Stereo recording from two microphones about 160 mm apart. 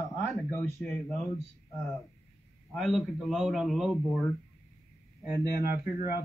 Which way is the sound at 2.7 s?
Centre (ahead or behind).